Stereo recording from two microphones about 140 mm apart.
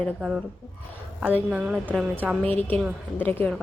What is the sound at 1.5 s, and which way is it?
Speech, 10° right (ahead or behind).